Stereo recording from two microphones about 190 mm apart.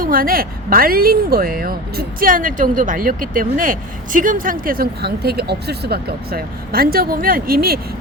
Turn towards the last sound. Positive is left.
turn(degrees=-50)  # may be behind; listen again after turning